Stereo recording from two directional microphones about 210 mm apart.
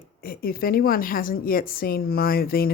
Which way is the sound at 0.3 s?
45° left (ahead or behind).